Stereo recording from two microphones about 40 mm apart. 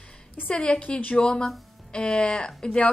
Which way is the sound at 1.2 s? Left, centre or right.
Left.